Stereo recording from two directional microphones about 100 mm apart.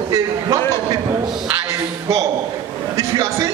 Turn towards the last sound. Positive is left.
turn(degrees=-30)  # may be behind; listen again after turning